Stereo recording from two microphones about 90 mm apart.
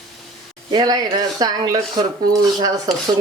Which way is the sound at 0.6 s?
50° right (ahead or behind).